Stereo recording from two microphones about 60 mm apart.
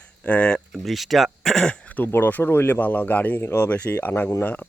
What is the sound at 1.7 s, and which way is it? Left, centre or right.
Speech, left.